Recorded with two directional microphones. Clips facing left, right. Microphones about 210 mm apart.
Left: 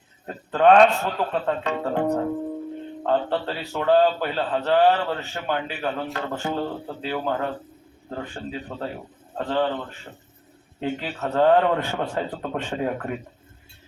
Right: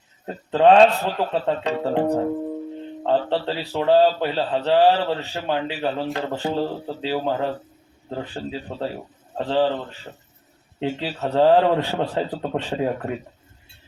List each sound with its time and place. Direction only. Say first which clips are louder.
0.5 s a man's voice: right 2 dB; 25° right (ahead or behind)
3.0 s a man's voice: right 2 dB; 25° right (ahead or behind)
10.8 s a man's voice: right 2 dB; 30° right (ahead or behind)